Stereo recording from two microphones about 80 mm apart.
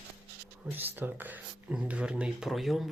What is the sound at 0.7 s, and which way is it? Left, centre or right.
Speech, right.